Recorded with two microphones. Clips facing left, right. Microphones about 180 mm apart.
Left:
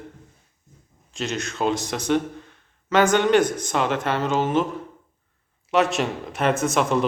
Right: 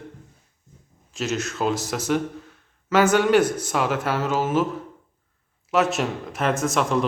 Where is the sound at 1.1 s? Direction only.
5° right (ahead or behind).